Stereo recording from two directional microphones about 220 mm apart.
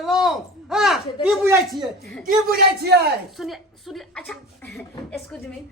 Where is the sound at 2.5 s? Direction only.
45° right (ahead or behind).